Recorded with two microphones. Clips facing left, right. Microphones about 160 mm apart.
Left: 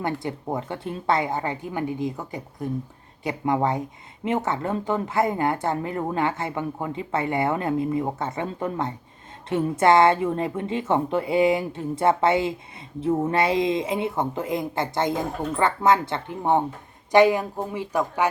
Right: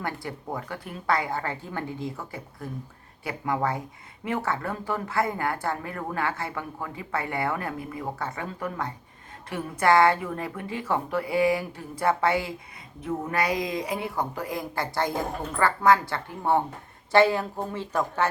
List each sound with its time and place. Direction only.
0.0 s speech: 20° left (ahead or behind)